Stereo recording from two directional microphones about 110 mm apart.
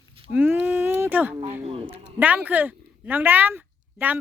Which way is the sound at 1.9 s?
15° right (ahead or behind).